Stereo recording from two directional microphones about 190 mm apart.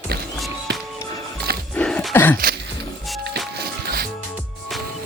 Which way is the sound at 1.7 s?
5° left (ahead or behind).